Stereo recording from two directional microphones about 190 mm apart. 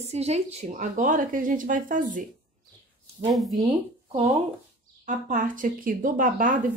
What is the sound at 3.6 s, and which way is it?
Speech, 25° right (ahead or behind).